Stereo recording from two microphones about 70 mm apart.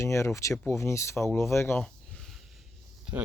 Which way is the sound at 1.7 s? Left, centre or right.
Centre.